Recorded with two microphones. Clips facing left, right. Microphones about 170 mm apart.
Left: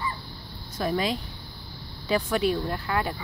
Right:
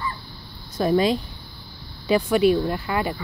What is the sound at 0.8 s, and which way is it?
Speech, 30° right (ahead or behind).